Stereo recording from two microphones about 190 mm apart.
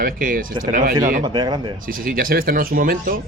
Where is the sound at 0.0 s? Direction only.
45° right (ahead or behind).